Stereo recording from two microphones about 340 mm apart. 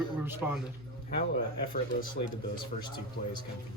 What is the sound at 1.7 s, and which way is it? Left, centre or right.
Speech, left.